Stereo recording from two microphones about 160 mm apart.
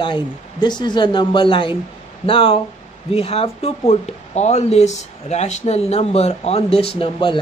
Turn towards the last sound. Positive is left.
turn(degrees=30)  # may be behind; listen again after turning